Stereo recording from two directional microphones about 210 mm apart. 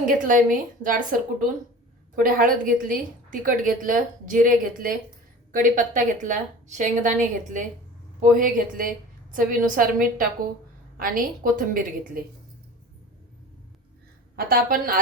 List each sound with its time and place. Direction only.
0.0 s a woman's voice: 40° right (ahead or behind)
2.1 s a woman's voice: 40° right (ahead or behind)
14.3 s a woman's voice: 45° right (ahead or behind)